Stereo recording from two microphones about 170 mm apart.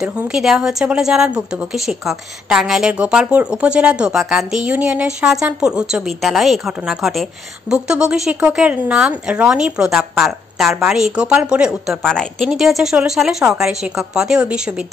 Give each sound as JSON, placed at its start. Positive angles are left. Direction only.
{"t": 0.0, "sound": "a woman's voice", "side_deg": -5}